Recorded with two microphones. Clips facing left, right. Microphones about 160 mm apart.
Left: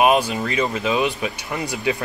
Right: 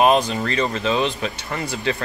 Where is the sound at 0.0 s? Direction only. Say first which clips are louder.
Even; 10° left (ahead or behind).